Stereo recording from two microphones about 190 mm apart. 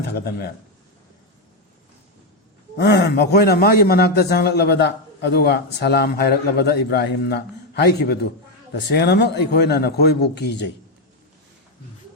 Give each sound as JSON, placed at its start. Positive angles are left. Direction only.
{"t": 0.0, "sound": "a man's voice", "side_deg": 55}
{"t": 2.7, "sound": "a man's voice", "side_deg": 60}